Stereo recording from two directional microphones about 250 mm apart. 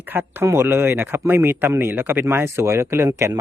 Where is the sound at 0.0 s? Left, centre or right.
Centre.